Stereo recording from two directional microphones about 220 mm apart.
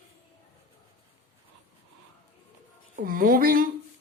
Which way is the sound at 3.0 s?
40° right (ahead or behind).